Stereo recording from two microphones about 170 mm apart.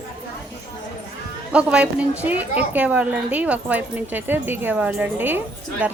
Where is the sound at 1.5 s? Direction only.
5° right (ahead or behind).